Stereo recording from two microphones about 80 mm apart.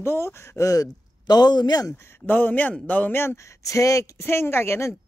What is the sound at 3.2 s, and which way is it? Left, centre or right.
Speech, left.